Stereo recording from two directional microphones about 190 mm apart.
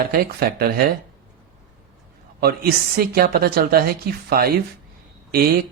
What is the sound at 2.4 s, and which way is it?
A woman's voice, 55° right (ahead or behind).